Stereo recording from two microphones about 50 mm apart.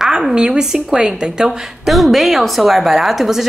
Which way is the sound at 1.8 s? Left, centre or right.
Centre.